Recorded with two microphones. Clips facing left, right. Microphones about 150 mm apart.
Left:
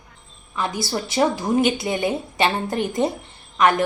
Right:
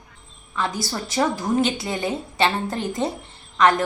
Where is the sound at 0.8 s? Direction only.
15° left (ahead or behind).